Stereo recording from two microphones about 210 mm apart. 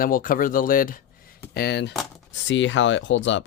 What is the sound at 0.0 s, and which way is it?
Speech, 40° left (ahead or behind).